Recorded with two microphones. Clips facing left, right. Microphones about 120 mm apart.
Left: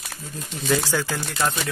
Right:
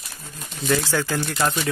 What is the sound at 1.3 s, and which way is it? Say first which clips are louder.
Speech: right 1 dB; centre (ahead or behind).